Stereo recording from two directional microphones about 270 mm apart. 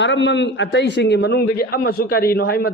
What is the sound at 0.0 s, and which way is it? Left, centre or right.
A man's voice, left.